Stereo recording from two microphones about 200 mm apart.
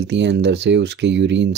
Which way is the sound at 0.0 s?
60° right (ahead or behind).